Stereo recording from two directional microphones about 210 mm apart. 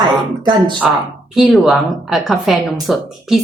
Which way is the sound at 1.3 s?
Centre (ahead or behind).